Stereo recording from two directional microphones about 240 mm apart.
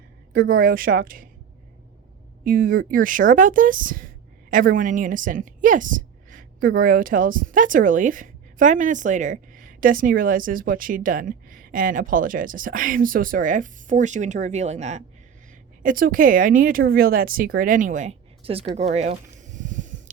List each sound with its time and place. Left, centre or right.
0.3 s a woman's voice: right
2.4 s a woman's voice: right